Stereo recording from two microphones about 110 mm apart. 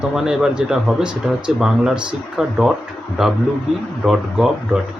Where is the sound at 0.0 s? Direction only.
5° right (ahead or behind).